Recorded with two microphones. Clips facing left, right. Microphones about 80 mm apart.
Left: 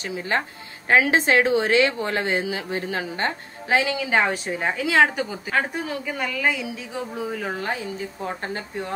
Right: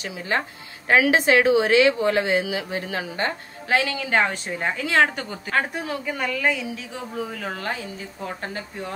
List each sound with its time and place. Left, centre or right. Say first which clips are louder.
0.8 s a woman's voice: right 1 dB; left
3.6 s a woman's voice: left 1 dB; left
4.0 s a woman's voice: left 1 dB; centre